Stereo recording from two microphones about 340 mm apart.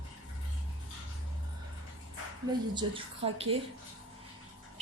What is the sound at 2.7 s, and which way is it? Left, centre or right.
Speech, centre.